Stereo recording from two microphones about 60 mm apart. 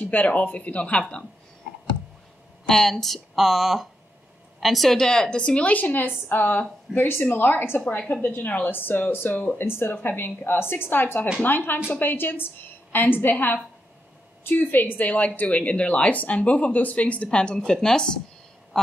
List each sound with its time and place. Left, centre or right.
0.0 s speech: left
2.6 s a woman's voice: centre; by 9.4 s left
9.6 s a woman's voice: left; by 18.0 s centre